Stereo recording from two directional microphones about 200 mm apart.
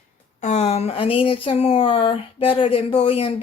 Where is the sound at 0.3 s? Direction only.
35° left (ahead or behind).